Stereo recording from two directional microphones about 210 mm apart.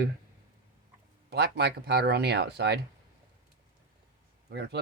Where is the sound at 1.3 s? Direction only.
50° right (ahead or behind).